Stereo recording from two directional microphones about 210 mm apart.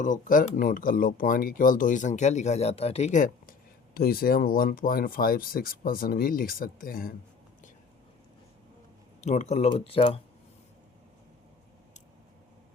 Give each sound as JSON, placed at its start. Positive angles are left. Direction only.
{"t": 0.0, "sound": "speech", "side_deg": 40}
{"t": 9.2, "sound": "speech", "side_deg": 35}